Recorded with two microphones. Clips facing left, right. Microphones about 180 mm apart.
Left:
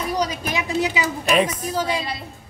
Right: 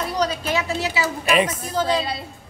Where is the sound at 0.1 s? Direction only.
10° left (ahead or behind).